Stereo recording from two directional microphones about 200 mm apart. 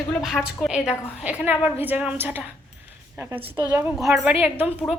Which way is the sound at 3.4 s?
25° right (ahead or behind).